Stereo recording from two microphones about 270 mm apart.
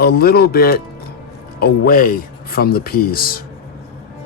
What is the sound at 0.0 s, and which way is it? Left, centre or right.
Speech, left.